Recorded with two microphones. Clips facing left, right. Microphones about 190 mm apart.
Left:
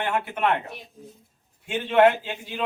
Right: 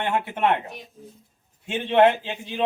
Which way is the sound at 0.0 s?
25° right (ahead or behind).